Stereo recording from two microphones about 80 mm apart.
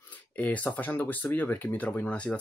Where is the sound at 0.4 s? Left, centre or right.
Centre.